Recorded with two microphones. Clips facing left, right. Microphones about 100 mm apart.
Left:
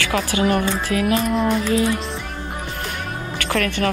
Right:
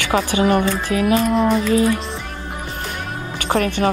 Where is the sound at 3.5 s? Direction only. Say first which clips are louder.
Right 3 dB; 35° right (ahead or behind).